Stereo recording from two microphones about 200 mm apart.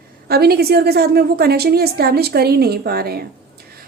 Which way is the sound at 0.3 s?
50° right (ahead or behind).